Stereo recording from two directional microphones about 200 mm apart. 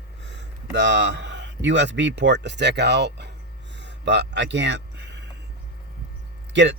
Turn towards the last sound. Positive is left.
turn(degrees=-60)  # may be behind; listen again after turning